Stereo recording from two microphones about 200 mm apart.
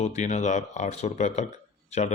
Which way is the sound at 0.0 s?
35° left (ahead or behind).